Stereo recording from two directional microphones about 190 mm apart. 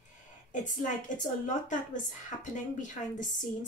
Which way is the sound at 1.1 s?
40° left (ahead or behind).